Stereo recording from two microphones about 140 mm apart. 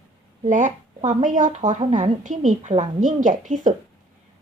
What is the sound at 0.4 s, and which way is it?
A woman's voice, 60° right (ahead or behind).